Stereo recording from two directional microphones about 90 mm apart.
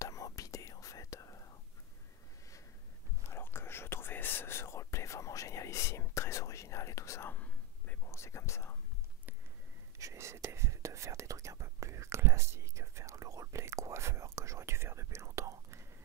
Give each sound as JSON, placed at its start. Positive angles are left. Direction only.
{"t": 0.0, "sound": "whispering", "side_deg": 40}
{"t": 3.3, "sound": "whispering", "side_deg": 25}
{"t": 7.3, "sound": "whispering", "side_deg": 15}
{"t": 8.0, "sound": "whispering", "side_deg": 30}
{"t": 9.9, "sound": "whispering", "side_deg": -35}